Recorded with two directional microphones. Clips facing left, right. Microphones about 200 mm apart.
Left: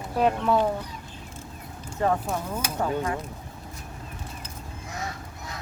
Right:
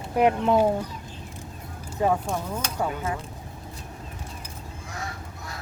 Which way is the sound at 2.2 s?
5° left (ahead or behind).